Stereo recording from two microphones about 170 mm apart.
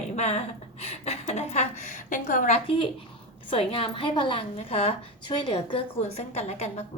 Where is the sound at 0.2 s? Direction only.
40° left (ahead or behind).